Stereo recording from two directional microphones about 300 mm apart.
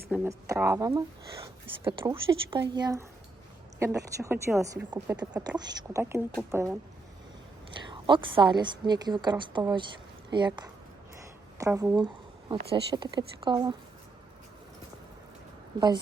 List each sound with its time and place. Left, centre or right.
0.1 s speech: centre
7.8 s speech: centre